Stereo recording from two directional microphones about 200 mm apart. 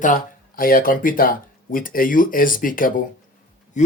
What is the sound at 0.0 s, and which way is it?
Speech, 45° left (ahead or behind).